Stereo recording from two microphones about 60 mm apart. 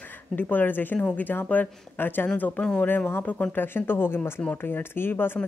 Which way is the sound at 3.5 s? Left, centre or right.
Left.